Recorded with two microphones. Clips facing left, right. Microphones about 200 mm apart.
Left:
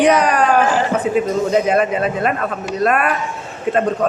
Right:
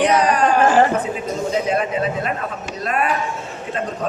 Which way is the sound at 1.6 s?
60° left (ahead or behind).